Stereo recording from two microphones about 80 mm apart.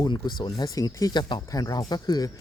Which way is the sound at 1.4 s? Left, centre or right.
Left.